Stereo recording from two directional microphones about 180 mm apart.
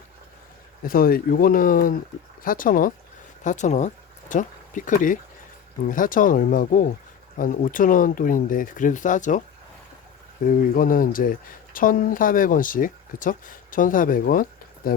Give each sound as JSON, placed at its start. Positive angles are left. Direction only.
{"t": 0.9, "sound": "speech", "side_deg": 55}
{"t": 10.4, "sound": "speech", "side_deg": 50}